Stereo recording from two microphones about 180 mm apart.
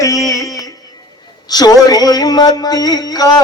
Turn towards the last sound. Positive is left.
turn(degrees=20)  # may be behind; listen again after turning